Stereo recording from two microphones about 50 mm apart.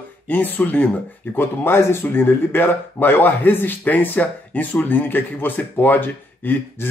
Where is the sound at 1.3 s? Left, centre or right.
Left.